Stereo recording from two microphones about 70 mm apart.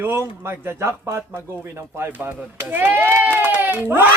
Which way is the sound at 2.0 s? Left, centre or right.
Right.